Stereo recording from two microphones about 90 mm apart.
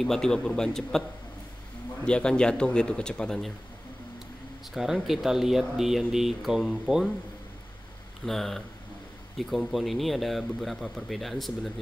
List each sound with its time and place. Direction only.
0.0 s speech: 5° left (ahead or behind)
2.0 s speech: 10° left (ahead or behind)
4.7 s speech: 5° right (ahead or behind)
8.3 s speech: 5° left (ahead or behind)